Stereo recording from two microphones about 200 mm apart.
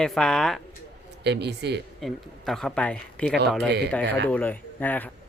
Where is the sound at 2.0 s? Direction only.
Centre (ahead or behind).